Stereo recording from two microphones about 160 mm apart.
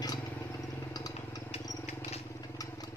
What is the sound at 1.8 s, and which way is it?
Vehicle, 40° left (ahead or behind).